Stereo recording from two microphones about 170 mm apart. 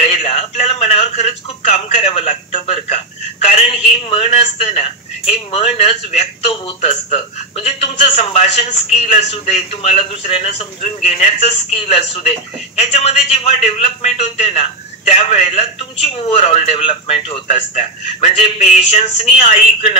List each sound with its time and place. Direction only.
0.0 s speech: 35° left (ahead or behind)